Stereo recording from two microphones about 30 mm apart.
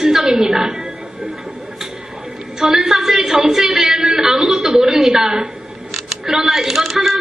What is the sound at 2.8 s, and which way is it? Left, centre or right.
A woman's voice, centre.